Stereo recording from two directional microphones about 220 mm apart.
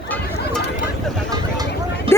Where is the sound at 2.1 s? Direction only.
25° right (ahead or behind).